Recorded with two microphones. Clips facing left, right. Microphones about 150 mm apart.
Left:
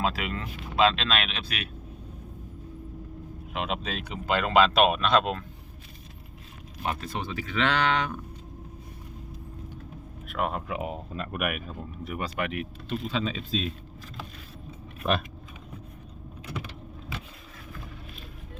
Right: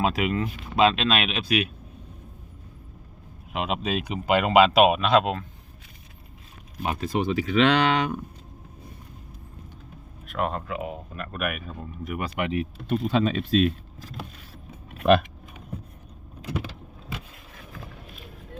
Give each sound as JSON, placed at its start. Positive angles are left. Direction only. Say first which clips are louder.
{"t": 0.0, "sound": "speech", "louder": "right 5 dB", "side_deg": -15}
{"t": 3.5, "sound": "speech", "louder": "right 5 dB", "side_deg": -5}
{"t": 6.8, "sound": "speech", "louder": "right 6 dB", "side_deg": -15}
{"t": 10.2, "sound": "speech", "louder": "right 2 dB", "side_deg": 5}
{"t": 10.7, "sound": "speech", "louder": "even", "side_deg": 20}
{"t": 11.3, "sound": "speech", "louder": "right 1 dB", "side_deg": 5}
{"t": 12.4, "sound": "speech", "louder": "right 5 dB", "side_deg": -30}
{"t": 12.9, "sound": "speech", "louder": "right 7 dB", "side_deg": -55}
{"t": 14.9, "sound": "keys jangling", "louder": "right 9 dB", "side_deg": -75}